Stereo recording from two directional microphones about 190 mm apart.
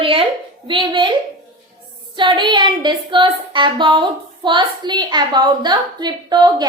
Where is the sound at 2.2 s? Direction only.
25° right (ahead or behind).